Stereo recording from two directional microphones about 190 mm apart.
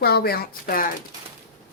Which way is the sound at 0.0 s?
55° left (ahead or behind).